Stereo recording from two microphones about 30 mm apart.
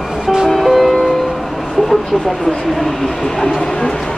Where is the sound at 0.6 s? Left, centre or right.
Centre.